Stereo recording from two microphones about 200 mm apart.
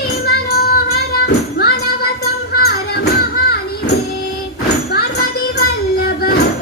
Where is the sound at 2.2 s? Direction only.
50° left (ahead or behind).